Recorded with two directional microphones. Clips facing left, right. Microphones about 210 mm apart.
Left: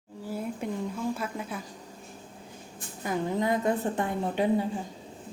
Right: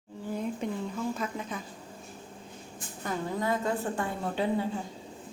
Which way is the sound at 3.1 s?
20° left (ahead or behind).